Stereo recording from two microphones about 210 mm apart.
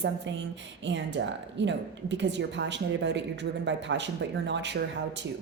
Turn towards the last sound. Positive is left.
turn(degrees=-55)  # may be behind; listen again after turning